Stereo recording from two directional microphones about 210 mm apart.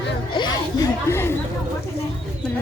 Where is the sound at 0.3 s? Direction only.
20° left (ahead or behind).